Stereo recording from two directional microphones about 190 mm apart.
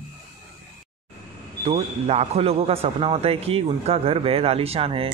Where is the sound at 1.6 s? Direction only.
35° right (ahead or behind).